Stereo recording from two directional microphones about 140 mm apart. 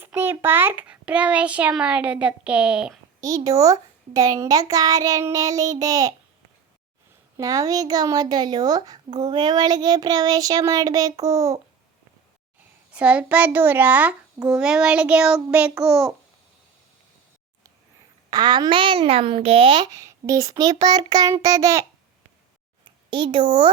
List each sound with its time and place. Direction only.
0.0 s a child's voice: 15° right (ahead or behind)
3.2 s speech: 25° right (ahead or behind)
7.3 s speech: 25° right (ahead or behind)
12.9 s a child's voice: 10° right (ahead or behind)
18.3 s speech: 30° right (ahead or behind)
23.0 s a woman's voice: 35° right (ahead or behind)